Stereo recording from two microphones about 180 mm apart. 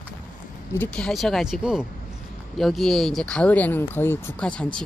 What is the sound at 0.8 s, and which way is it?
Speech, 5° left (ahead or behind).